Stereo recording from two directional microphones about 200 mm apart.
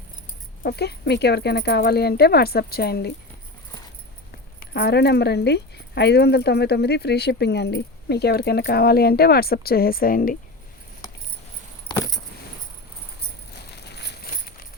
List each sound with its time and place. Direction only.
0.6 s speech: 55° left (ahead or behind)
4.6 s speech: 50° left (ahead or behind)
11.9 s keys jangling: 20° left (ahead or behind)
13.5 s a sound: 55° left (ahead or behind)